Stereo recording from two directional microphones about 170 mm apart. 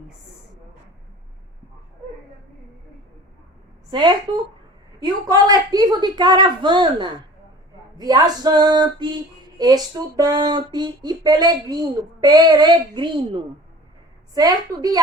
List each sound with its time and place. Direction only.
5.0 s speech: 20° right (ahead or behind)